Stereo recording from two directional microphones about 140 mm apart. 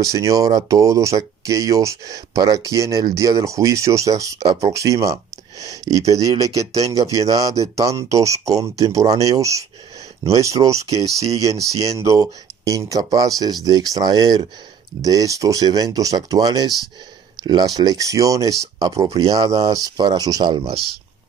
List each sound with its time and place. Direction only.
0.0 s speech: 25° right (ahead or behind)